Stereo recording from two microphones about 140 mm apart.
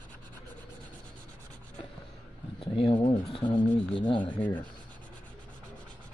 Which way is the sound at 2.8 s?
40° left (ahead or behind).